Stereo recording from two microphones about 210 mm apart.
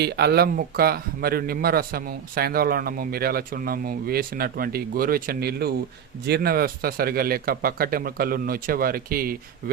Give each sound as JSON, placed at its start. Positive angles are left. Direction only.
{"t": 0.0, "sound": "a man's voice", "side_deg": -50}